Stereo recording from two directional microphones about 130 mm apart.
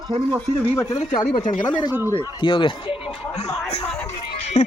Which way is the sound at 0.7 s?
20° left (ahead or behind).